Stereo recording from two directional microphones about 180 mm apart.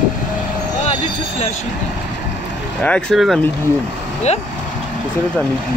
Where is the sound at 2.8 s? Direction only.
5° left (ahead or behind).